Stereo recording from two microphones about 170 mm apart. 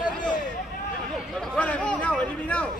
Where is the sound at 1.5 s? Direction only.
5° left (ahead or behind).